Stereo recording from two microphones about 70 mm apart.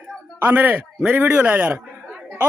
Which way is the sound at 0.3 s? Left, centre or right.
Right.